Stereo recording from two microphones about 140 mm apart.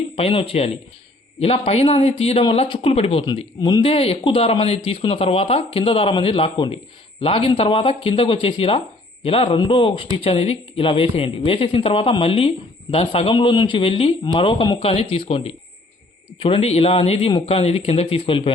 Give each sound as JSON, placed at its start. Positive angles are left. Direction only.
{"t": 0.2, "sound": "a man's voice", "side_deg": 45}